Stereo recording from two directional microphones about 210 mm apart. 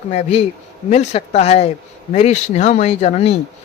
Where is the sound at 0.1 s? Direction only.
30° left (ahead or behind).